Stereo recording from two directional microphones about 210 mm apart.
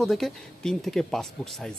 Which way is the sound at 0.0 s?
Centre (ahead or behind).